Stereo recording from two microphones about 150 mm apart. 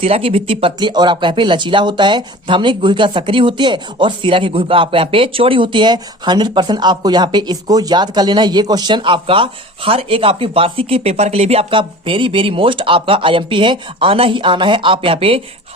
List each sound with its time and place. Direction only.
0.0 s speech: 40° right (ahead or behind)